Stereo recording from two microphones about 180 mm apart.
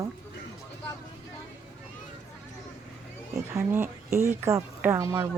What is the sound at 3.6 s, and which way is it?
Speech, 15° right (ahead or behind).